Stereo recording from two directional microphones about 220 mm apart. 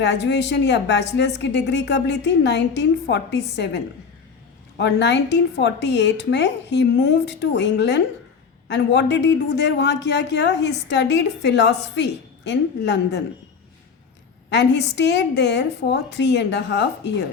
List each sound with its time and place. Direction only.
0.0 s a woman's voice: 50° left (ahead or behind)
4.8 s a woman's voice: 50° left (ahead or behind)
14.5 s a woman's voice: 50° left (ahead or behind)